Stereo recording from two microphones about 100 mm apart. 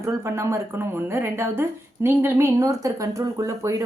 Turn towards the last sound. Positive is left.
turn(degrees=-35)  # may be behind; listen again after turning